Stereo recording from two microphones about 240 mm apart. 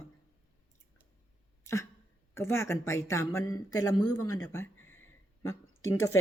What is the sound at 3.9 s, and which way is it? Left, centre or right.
Speech, left.